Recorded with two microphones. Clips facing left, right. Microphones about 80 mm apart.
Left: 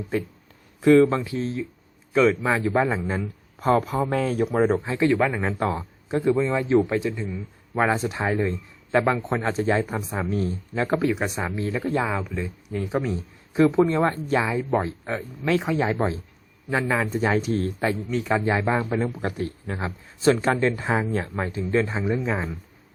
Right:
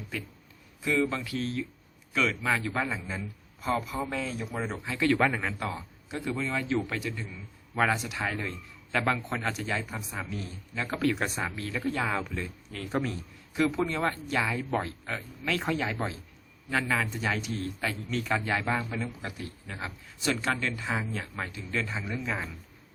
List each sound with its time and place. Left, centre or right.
0.1 s a man's voice: left
0.8 s speech: left
1.2 s speech: left
3.6 s speech: left
4.9 s speech: left
9.4 s a man's voice: left
10.9 s speech: centre
14.4 s speech: left
17.1 s a man's voice: left
17.8 s a man's voice: left